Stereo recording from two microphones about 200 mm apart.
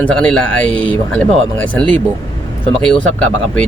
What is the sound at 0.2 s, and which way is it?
Speech, 5° left (ahead or behind).